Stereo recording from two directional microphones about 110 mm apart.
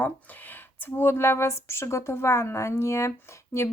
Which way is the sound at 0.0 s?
15° left (ahead or behind).